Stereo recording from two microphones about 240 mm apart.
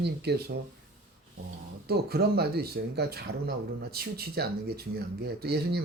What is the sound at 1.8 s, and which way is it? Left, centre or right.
Speech, right.